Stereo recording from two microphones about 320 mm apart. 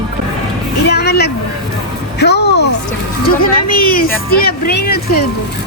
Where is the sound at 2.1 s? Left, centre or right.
Left.